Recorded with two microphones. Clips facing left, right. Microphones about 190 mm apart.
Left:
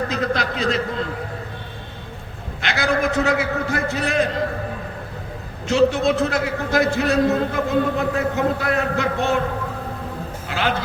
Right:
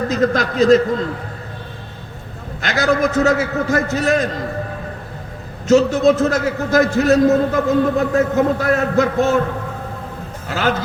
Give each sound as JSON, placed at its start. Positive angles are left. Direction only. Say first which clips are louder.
{"t": 0.1, "sound": "a man's voice", "louder": "right 5 dB", "side_deg": -45}
{"t": 2.6, "sound": "a man's voice", "louder": "right 4 dB", "side_deg": -40}
{"t": 5.6, "sound": "a man's voice", "louder": "right 5 dB", "side_deg": -40}
{"t": 10.5, "sound": "a man's voice", "louder": "right 4 dB", "side_deg": -40}